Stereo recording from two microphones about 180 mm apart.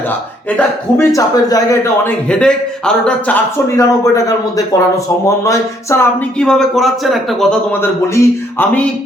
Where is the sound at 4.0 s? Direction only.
20° left (ahead or behind).